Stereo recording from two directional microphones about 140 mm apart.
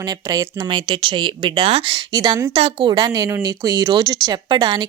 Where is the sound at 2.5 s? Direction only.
40° right (ahead or behind).